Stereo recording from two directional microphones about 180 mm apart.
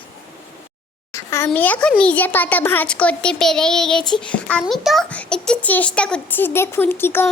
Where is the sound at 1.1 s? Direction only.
15° left (ahead or behind).